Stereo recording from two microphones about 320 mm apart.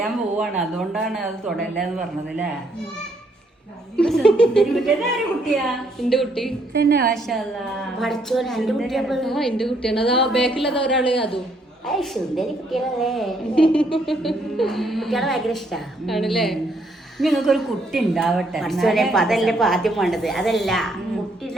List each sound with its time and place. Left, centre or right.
0.0 s a woman's voice: centre
3.9 s a woman's voice: centre
6.7 s a woman's voice: right
7.1 s a woman's voice: centre
11.1 s a woman's voice: centre
11.9 s a woman's voice: centre